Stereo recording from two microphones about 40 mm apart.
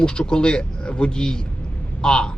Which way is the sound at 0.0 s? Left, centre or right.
Left.